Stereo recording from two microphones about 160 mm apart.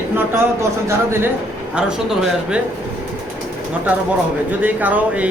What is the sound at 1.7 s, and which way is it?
Speech, 5° right (ahead or behind).